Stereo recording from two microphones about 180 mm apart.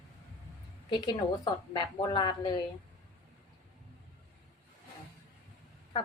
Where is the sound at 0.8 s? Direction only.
25° left (ahead or behind).